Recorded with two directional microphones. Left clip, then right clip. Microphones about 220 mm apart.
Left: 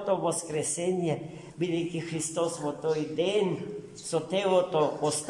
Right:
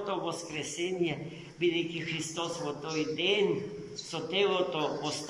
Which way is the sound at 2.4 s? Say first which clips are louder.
Left 9 dB; 35° left (ahead or behind).